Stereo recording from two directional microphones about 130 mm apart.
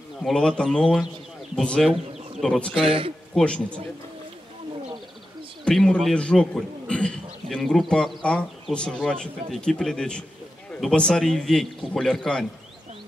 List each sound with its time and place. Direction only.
0.2 s a man's voice: 5° left (ahead or behind)
2.7 s a man's voice: 45° right (ahead or behind)
3.3 s a man's voice: 5° left (ahead or behind)
5.7 s a man's voice: 5° left (ahead or behind)